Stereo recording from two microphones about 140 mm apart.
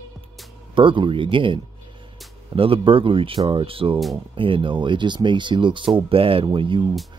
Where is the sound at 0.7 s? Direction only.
35° right (ahead or behind).